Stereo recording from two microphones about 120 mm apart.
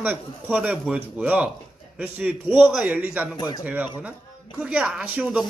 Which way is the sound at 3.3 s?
35° left (ahead or behind).